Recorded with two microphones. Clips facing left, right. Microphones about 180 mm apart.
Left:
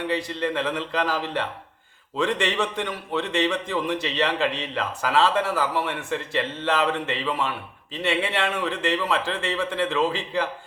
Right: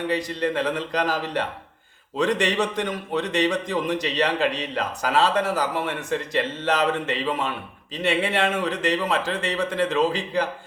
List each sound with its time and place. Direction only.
0.1 s speech: 40° right (ahead or behind)